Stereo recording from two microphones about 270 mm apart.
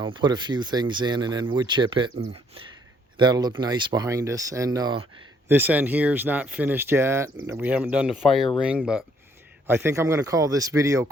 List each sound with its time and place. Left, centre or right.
0.0 s speech: centre